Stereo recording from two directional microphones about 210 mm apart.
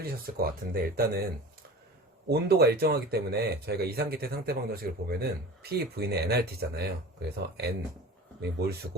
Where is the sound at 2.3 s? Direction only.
50° right (ahead or behind).